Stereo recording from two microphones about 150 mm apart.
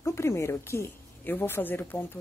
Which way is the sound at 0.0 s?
20° left (ahead or behind).